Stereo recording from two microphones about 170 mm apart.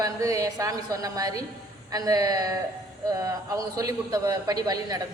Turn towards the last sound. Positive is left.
turn(degrees=-20)  # may be behind; listen again after turning